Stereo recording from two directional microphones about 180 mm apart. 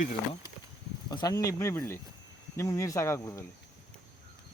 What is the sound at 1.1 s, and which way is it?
Speech, 20° left (ahead or behind).